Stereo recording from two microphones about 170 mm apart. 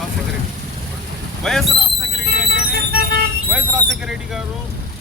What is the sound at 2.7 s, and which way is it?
Vehicle, 65° right (ahead or behind).